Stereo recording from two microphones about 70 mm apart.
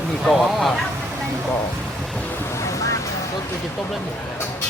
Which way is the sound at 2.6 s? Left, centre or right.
Left.